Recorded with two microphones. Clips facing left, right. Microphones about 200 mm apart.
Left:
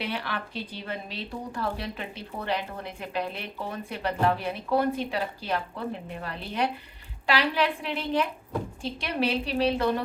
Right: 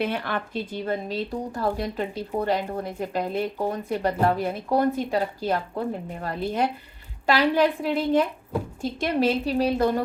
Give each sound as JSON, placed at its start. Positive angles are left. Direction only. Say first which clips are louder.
{"t": 0.0, "sound": "speech", "louder": "right 6 dB", "side_deg": -50}